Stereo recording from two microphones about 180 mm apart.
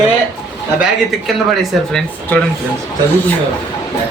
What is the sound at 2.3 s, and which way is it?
Speech, 10° left (ahead or behind).